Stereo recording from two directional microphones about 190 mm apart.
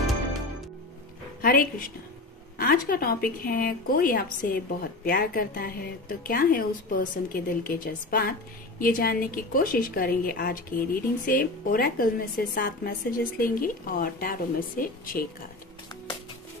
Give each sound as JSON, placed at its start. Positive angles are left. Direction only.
{"t": 1.4, "sound": "a woman's voice", "side_deg": 50}